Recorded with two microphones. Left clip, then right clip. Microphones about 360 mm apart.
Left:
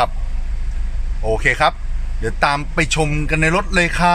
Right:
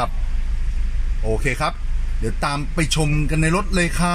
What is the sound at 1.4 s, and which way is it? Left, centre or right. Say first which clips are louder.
Speech: left 10 dB; left.